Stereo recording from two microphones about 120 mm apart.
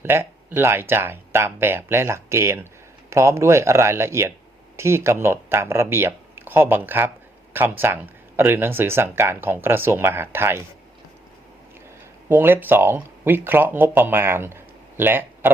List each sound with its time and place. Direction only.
0.0 s speech: 20° right (ahead or behind)
12.3 s speech: 15° right (ahead or behind)